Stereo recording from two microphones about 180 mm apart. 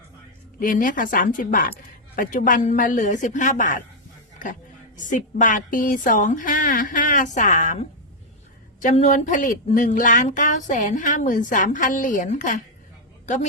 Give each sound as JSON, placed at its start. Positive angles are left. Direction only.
{"t": 0.6, "sound": "speech", "side_deg": 50}
{"t": 4.9, "sound": "speech", "side_deg": 45}